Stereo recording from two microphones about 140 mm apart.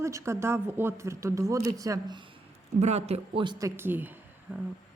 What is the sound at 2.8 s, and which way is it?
Speech, 50° right (ahead or behind).